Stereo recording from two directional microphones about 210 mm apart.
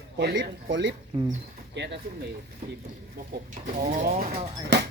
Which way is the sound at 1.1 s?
25° right (ahead or behind).